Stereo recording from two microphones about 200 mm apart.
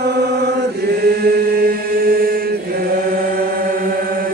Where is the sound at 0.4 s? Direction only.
50° right (ahead or behind).